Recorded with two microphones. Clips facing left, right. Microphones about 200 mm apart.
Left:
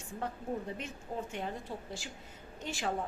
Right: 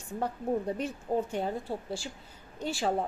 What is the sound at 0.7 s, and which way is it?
A woman's voice, 40° right (ahead or behind).